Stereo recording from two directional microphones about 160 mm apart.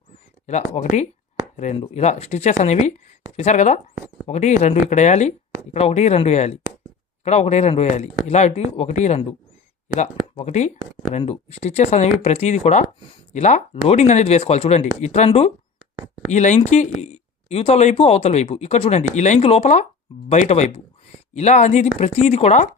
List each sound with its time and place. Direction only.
0.4 s speech: 45° left (ahead or behind)